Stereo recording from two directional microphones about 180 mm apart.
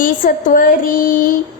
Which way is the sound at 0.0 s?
50° left (ahead or behind).